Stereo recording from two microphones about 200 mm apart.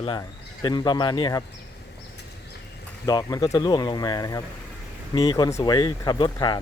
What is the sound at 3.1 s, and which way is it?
Speech, 20° left (ahead or behind).